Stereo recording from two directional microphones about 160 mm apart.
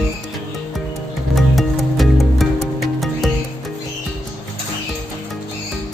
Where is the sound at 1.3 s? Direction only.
Centre (ahead or behind).